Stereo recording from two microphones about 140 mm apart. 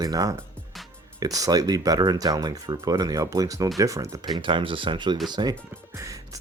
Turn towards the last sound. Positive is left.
turn(degrees=-25)  # may be behind; listen again after turning